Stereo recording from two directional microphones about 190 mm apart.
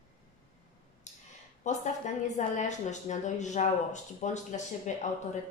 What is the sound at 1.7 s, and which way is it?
A woman's voice, 40° left (ahead or behind).